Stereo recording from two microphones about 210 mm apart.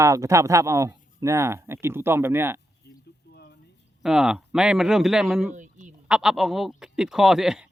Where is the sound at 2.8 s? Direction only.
50° left (ahead or behind).